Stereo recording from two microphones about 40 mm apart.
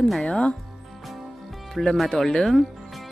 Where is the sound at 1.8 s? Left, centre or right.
Centre.